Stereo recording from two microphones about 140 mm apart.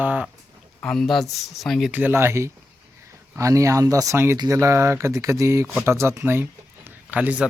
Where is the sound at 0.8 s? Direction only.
5° left (ahead or behind).